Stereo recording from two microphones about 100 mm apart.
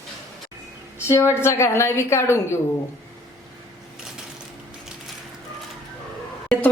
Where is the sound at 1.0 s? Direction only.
25° left (ahead or behind).